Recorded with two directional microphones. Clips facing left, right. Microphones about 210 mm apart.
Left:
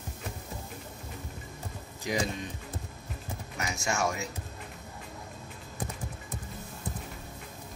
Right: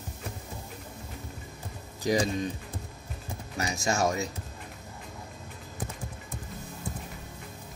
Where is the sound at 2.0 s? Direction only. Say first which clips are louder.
Right 6 dB; 35° right (ahead or behind).